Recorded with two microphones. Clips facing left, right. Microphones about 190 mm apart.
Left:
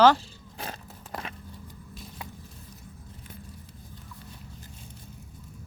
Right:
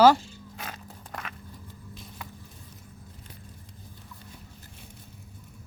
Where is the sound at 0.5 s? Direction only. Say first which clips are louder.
Left 3 dB; 30° left (ahead or behind).